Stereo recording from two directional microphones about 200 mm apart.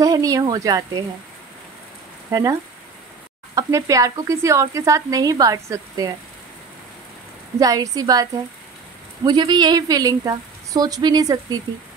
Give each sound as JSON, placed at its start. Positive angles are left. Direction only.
{"t": 0.0, "sound": "speech", "side_deg": -15}
{"t": 3.5, "sound": "speech", "side_deg": -15}
{"t": 7.5, "sound": "speech", "side_deg": -15}